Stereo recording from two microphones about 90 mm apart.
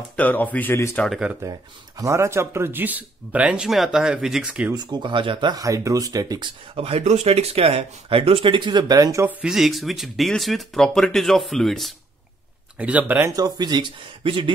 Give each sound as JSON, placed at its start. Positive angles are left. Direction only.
{"t": 0.1, "sound": "speech", "side_deg": 20}
{"t": 1.4, "sound": "speech", "side_deg": -40}
{"t": 2.1, "sound": "a man's voice", "side_deg": -30}
{"t": 4.7, "sound": "speech", "side_deg": -60}
{"t": 5.5, "sound": "speech", "side_deg": -40}
{"t": 6.7, "sound": "speech", "side_deg": -90}
{"t": 9.4, "sound": "speech", "side_deg": -5}
{"t": 12.7, "sound": "speech", "side_deg": -15}
{"t": 13.4, "sound": "speech", "side_deg": -50}